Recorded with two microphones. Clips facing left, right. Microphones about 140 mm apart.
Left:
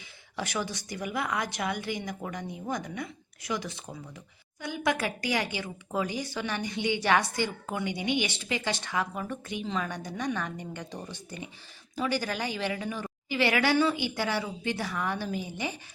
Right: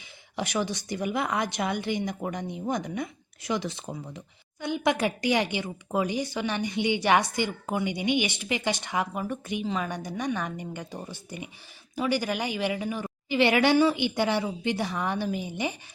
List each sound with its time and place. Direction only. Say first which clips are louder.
0.3 s a woman's voice: right 4 dB; 20° right (ahead or behind)